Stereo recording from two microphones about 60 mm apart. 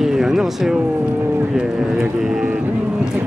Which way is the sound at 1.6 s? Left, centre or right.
Centre.